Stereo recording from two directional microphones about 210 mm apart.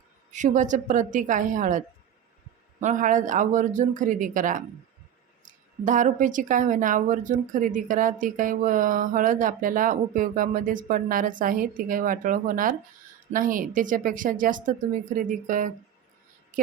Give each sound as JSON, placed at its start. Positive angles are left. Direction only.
{"t": 0.3, "sound": "a woman's voice", "side_deg": -35}
{"t": 2.8, "sound": "a woman's voice", "side_deg": -35}